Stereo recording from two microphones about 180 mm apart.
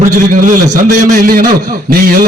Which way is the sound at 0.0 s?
45° right (ahead or behind).